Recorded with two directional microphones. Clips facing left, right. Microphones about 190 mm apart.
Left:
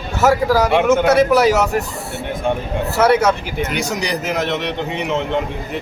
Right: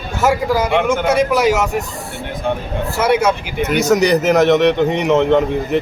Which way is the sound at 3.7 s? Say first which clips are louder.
Right 13 dB; 45° right (ahead or behind).